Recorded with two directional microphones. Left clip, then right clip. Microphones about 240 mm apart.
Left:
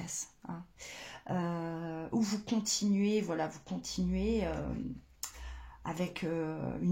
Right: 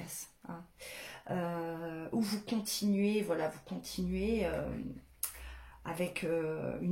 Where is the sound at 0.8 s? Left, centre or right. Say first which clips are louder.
Even; left.